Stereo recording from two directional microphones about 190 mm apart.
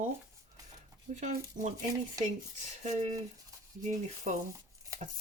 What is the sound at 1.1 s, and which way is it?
Speech, 40° right (ahead or behind).